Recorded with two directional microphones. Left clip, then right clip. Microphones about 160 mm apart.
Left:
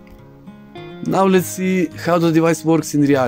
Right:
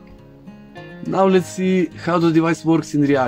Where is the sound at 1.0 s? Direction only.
50° left (ahead or behind).